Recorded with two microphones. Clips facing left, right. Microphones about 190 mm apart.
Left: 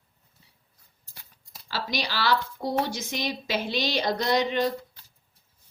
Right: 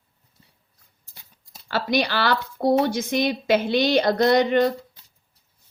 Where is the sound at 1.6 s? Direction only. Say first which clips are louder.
Right 8 dB; 55° right (ahead or behind).